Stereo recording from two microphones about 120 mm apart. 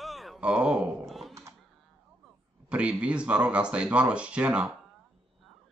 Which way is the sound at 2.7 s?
10° right (ahead or behind).